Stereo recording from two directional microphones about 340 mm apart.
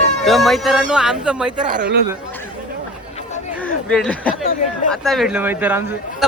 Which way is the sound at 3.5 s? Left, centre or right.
Centre.